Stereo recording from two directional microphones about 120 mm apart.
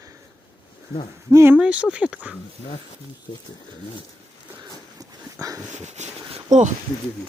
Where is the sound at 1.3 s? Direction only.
25° right (ahead or behind).